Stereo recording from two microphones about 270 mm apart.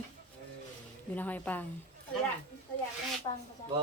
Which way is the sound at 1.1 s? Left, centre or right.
Centre.